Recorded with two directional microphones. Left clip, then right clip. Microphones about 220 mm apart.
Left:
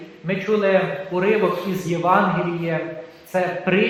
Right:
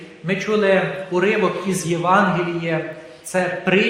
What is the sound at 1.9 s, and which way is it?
Speech, 45° right (ahead or behind).